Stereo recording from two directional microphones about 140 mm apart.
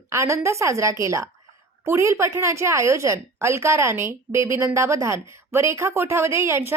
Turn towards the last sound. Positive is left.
turn(degrees=-20)  # may be behind; listen again after turning